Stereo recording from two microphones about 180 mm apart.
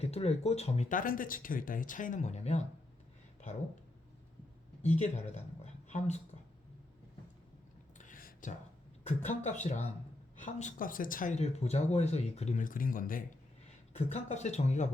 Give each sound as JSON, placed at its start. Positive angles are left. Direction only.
{"t": 0.0, "sound": "speech", "side_deg": 35}
{"t": 4.8, "sound": "speech", "side_deg": 40}
{"t": 7.9, "sound": "a sound", "side_deg": 45}
{"t": 9.0, "sound": "speech", "side_deg": 40}
{"t": 13.9, "sound": "speech", "side_deg": 40}